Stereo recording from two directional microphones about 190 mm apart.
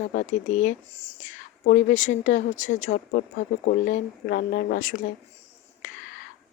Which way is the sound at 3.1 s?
50° left (ahead or behind).